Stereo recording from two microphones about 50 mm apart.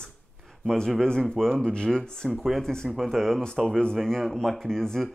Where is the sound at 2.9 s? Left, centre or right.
Centre.